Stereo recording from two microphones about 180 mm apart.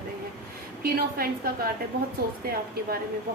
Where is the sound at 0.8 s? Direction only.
55° right (ahead or behind).